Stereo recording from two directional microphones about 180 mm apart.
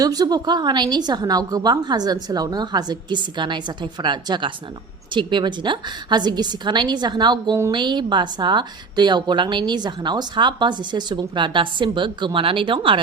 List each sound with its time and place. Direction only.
0.0 s a woman's voice: 20° right (ahead or behind)